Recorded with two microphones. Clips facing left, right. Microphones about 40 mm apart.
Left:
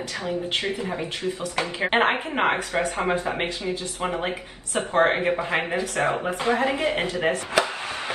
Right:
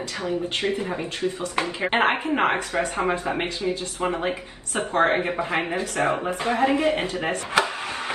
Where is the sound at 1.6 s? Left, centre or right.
Left.